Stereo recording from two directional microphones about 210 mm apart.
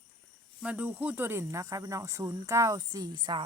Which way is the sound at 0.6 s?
5° right (ahead or behind).